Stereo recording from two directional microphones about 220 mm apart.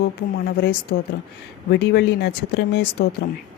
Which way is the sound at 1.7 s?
50° left (ahead or behind).